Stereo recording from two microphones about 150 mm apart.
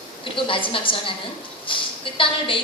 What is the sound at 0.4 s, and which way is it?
A woman's voice, 35° left (ahead or behind).